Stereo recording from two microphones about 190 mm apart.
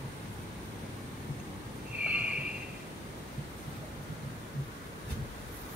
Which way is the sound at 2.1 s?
5° right (ahead or behind).